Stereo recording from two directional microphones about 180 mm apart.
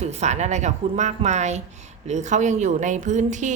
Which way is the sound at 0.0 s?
40° right (ahead or behind).